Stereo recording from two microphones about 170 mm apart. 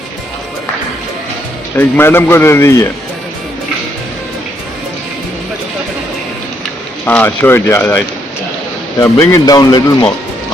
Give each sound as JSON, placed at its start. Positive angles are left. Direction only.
{"t": 1.7, "sound": "speech", "side_deg": 15}
{"t": 7.0, "sound": "speech", "side_deg": 10}